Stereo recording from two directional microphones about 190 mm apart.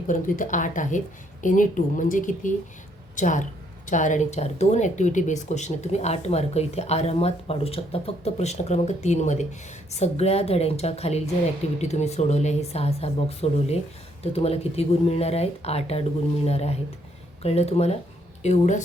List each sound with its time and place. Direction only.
0.1 s a woman's voice: 45° left (ahead or behind)